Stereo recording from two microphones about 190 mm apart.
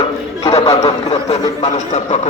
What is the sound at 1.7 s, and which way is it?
Speech, 40° left (ahead or behind).